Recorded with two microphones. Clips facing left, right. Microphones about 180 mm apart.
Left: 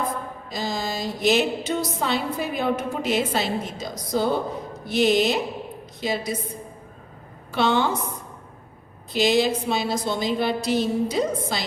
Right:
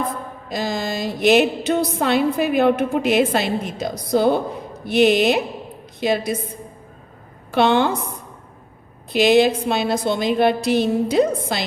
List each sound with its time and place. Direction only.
0.5 s a woman's voice: 65° right (ahead or behind)
7.5 s a woman's voice: 60° right (ahead or behind)
9.1 s a woman's voice: 60° right (ahead or behind)